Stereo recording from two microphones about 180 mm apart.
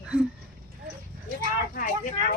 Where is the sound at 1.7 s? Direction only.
50° left (ahead or behind).